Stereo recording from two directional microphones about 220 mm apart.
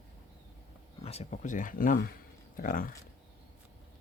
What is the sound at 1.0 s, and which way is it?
Speech, 30° left (ahead or behind).